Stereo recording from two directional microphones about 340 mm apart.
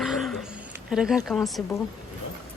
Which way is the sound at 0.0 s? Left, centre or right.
Centre.